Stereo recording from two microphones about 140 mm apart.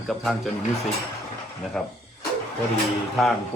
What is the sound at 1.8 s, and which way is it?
Speech, 5° left (ahead or behind).